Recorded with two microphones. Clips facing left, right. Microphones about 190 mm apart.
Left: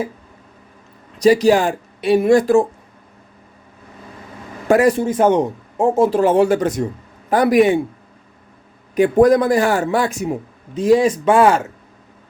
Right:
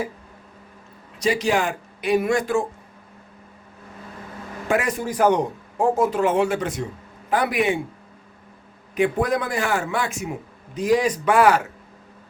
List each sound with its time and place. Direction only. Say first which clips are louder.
1.2 s a man's voice: left 9 dB; 40° left (ahead or behind)
4.7 s a man's voice: left 9 dB; 35° left (ahead or behind)
9.0 s a man's voice: left 9 dB; 40° left (ahead or behind)